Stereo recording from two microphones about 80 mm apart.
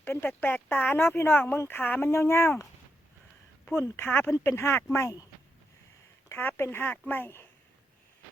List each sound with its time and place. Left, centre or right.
0.0 s speech: left
3.9 s speech: left
6.2 s speech: left